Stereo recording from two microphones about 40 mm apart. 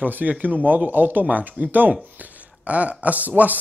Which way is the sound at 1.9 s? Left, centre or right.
Right.